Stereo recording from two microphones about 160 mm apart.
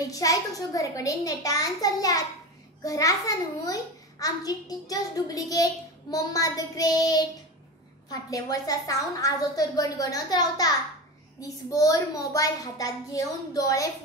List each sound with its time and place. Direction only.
0.1 s a child's voice: 20° left (ahead or behind)